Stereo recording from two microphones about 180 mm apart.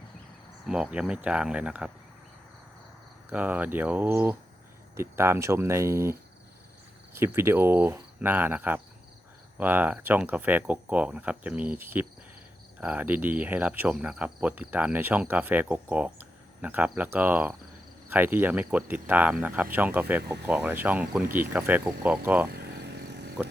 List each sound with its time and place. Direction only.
0.7 s speech: 5° right (ahead or behind)
3.2 s cricket: 10° right (ahead or behind)
22.4 s cricket: 65° right (ahead or behind)